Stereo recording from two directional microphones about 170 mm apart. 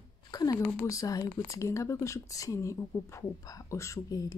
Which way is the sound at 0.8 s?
20° left (ahead or behind).